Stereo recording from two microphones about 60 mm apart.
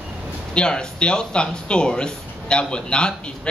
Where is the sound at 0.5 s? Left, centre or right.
Centre.